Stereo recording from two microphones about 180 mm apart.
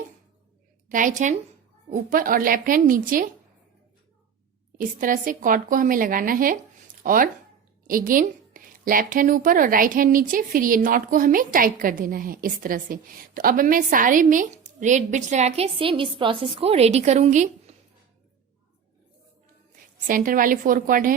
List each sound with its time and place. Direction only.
0.9 s a woman's voice: 45° right (ahead or behind)
4.8 s a woman's voice: 50° right (ahead or behind)
20.1 s a woman's voice: 50° right (ahead or behind)